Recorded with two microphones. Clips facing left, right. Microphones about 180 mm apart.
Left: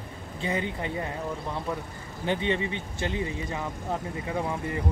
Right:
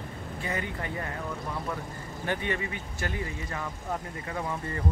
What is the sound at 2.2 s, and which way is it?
Speech, 20° left (ahead or behind).